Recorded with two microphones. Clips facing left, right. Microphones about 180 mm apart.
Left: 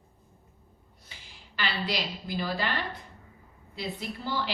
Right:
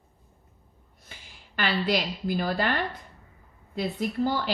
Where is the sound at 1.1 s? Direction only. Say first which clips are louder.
Right 4 dB; 50° right (ahead or behind).